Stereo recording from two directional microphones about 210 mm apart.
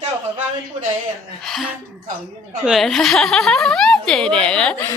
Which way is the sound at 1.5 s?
Centre (ahead or behind).